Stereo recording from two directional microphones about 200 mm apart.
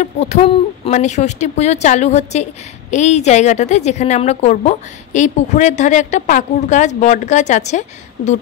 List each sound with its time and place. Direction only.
0.0 s a woman's voice: 35° left (ahead or behind)